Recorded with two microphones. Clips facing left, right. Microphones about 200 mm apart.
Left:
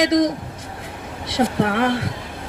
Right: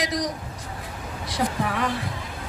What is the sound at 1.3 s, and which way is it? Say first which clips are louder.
Speech: left 7 dB; 70° left (ahead or behind).